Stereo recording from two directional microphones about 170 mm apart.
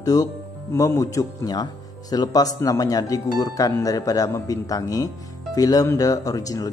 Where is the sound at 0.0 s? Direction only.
20° left (ahead or behind).